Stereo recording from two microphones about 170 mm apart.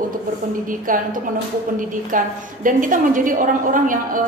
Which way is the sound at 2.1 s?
50° right (ahead or behind).